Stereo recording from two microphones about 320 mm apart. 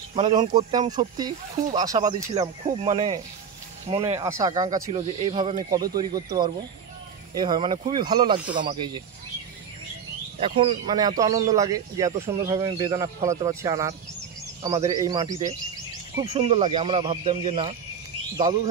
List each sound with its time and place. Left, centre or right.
0.1 s speech: centre
10.4 s speech: centre
16.3 s speech: centre